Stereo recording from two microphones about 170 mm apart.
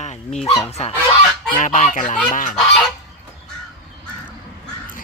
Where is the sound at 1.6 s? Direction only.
45° left (ahead or behind).